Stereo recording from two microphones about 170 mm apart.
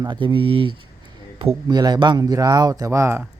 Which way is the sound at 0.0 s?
30° right (ahead or behind).